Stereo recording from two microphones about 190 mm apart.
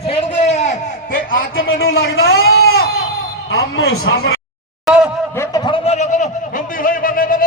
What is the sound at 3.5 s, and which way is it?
Speech, 80° left.